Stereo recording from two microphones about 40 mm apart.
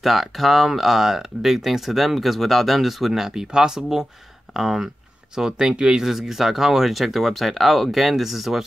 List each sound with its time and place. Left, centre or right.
0.0 s speech: centre
3.1 s speech: centre
5.3 s speech: centre
6.0 s speech: centre